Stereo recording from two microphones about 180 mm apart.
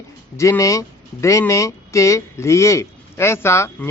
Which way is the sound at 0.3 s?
15° left (ahead or behind).